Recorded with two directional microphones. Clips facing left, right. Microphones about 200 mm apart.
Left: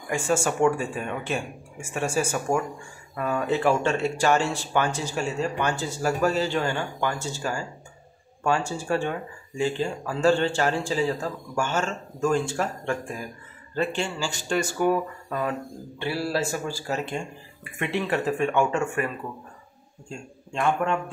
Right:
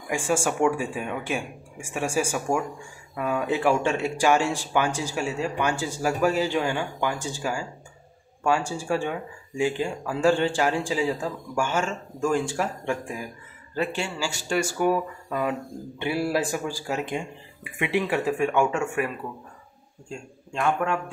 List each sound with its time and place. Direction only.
0.1 s speech: 10° right (ahead or behind)
16.0 s speech: 15° right (ahead or behind)
20.5 s speech: 5° right (ahead or behind)